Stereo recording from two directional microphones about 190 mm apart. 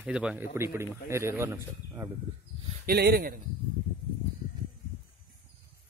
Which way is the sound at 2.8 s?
55° right (ahead or behind).